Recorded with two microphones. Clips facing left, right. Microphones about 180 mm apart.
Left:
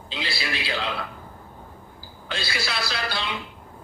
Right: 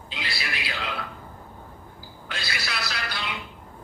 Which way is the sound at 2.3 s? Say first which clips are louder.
Left 4 dB; 30° left (ahead or behind).